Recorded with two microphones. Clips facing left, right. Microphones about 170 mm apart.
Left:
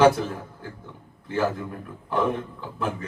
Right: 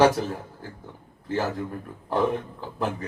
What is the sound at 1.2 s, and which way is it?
Speech, 35° right (ahead or behind).